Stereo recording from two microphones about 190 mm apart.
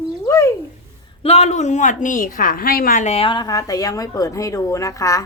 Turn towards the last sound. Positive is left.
turn(degrees=15)  # may be behind; listen again after turning